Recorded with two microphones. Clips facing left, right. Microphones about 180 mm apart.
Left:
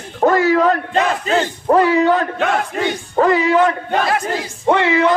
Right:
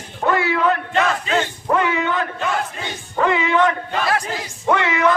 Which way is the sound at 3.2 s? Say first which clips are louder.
Left 4 dB; 35° left (ahead or behind).